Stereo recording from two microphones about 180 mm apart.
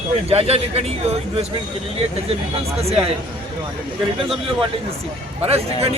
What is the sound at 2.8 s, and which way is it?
Speech, 35° right (ahead or behind).